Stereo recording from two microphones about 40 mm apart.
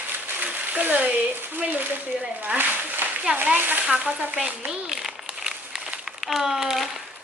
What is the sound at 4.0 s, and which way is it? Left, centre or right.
Speech, right.